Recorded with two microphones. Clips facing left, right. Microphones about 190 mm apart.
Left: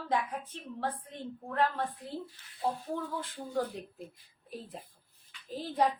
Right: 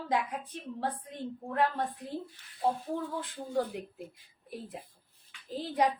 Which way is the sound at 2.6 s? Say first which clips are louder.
Right 3 dB; 15° right (ahead or behind).